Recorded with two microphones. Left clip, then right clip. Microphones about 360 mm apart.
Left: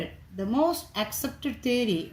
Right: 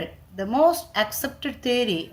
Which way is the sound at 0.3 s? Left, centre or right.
Right.